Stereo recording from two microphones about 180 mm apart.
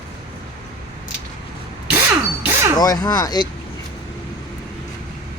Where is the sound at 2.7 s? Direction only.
20° left (ahead or behind).